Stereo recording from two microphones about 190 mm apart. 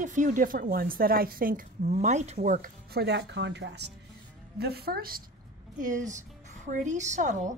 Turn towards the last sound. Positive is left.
turn(degrees=-40)  # may be behind; listen again after turning